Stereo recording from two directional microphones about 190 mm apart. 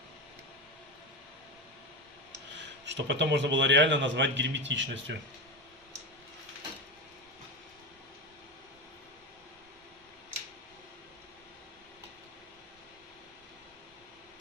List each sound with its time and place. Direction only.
2.8 s a man's voice: 70° right (ahead or behind)